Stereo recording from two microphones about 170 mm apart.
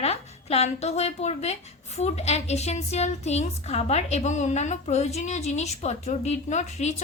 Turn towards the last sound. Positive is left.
turn(degrees=40)  # may be behind; listen again after turning